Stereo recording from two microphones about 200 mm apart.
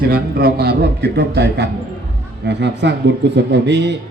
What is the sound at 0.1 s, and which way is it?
A man's voice, 50° right (ahead or behind).